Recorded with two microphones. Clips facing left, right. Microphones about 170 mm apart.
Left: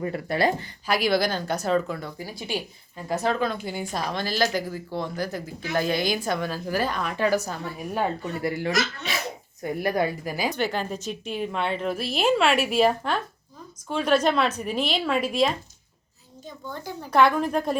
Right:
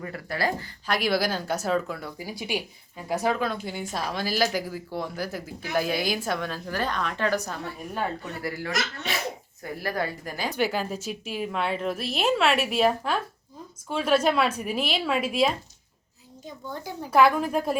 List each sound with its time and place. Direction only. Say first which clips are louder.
0.0 s speech: left 5 dB; 25° left (ahead or behind)
0.9 s speech: left 2 dB; centre (ahead or behind)
8.2 s a woman's voice: left 5 dB; 25° left (ahead or behind)
10.5 s speech: even; 10° right (ahead or behind)
16.6 s speech: even; 10° right (ahead or behind)